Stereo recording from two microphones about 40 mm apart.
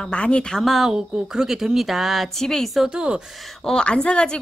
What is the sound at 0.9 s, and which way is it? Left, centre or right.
A woman's voice, centre.